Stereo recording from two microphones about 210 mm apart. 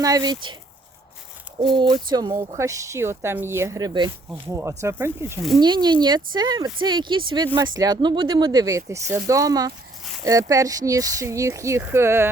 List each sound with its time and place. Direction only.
0.0 s speech: 20° right (ahead or behind)
1.5 s speech: 20° right (ahead or behind)